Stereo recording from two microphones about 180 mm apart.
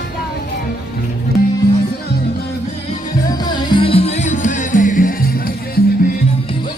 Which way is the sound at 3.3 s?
25° left (ahead or behind).